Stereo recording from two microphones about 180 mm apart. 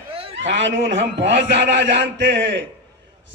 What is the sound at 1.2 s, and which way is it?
A man's voice, 75° right (ahead or behind).